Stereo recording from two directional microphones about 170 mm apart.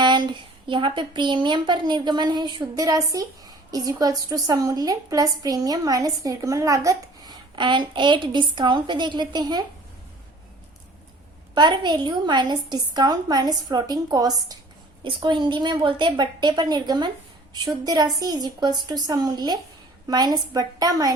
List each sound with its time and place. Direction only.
0.0 s speech: 25° right (ahead or behind)
11.5 s speech: 25° right (ahead or behind)